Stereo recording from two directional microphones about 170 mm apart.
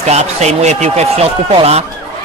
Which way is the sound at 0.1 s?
40° right (ahead or behind).